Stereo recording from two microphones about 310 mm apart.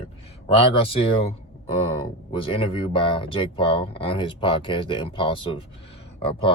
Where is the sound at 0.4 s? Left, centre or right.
Centre.